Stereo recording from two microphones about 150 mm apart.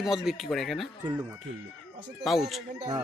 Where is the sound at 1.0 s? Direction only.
10° right (ahead or behind).